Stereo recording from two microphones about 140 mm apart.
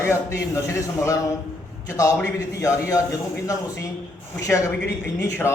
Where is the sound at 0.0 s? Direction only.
20° left (ahead or behind).